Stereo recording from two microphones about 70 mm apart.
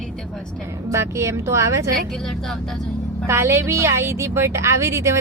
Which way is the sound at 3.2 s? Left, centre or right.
Right.